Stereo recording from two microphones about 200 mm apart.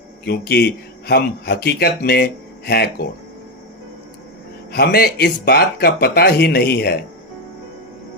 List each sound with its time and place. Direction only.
0.3 s speech: 50° left (ahead or behind)
4.7 s speech: 50° left (ahead or behind)